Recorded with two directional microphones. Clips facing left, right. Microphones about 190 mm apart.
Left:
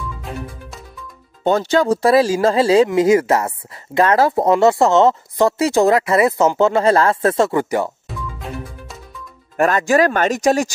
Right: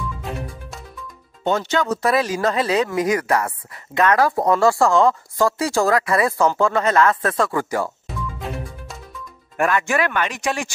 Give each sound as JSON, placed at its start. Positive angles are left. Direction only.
{"t": 0.2, "sound": "music", "side_deg": 0}
{"t": 1.4, "sound": "speech", "side_deg": 35}
{"t": 8.4, "sound": "music", "side_deg": 0}
{"t": 9.6, "sound": "speech", "side_deg": 40}